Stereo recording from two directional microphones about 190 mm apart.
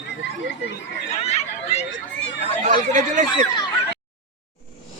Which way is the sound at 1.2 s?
35° left (ahead or behind).